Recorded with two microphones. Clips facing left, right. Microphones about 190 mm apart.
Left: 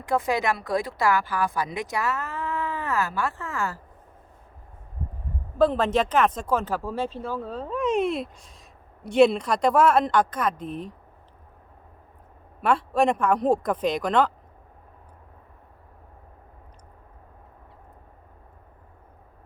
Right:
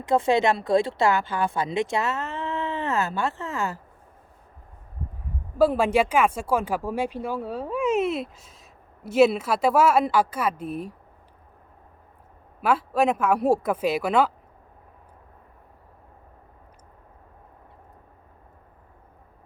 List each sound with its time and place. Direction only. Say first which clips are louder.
0.0 s speech: right 4 dB; 25° right (ahead or behind)
5.5 s speech: right 1 dB; 10° right (ahead or behind)
12.6 s speech: even; 5° right (ahead or behind)